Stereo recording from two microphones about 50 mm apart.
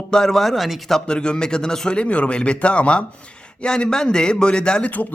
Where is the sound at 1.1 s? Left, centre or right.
Centre.